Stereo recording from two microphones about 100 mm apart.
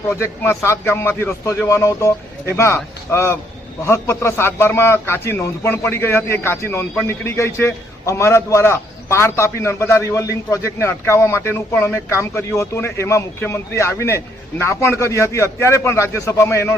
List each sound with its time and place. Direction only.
0.1 s a man's voice: 30° left (ahead or behind)